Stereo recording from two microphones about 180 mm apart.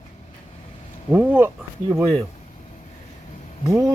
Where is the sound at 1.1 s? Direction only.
10° right (ahead or behind).